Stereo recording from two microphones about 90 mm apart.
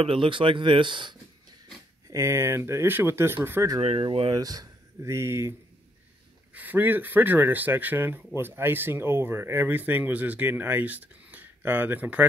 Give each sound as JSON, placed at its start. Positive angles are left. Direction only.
{"t": 0.0, "sound": "speech", "side_deg": -80}
{"t": 2.0, "sound": "speech", "side_deg": -35}
{"t": 4.0, "sound": "speech", "side_deg": -90}
{"t": 4.4, "sound": "a sound", "side_deg": -45}
{"t": 5.1, "sound": "speech", "side_deg": -30}
{"t": 6.5, "sound": "speech", "side_deg": -20}